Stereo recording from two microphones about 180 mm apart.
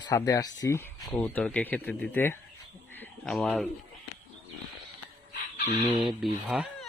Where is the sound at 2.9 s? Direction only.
10° left (ahead or behind).